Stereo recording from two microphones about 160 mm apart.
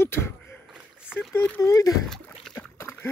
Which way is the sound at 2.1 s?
5° left (ahead or behind).